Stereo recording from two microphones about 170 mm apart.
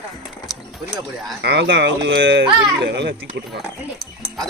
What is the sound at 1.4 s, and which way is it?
Speech, 85° right.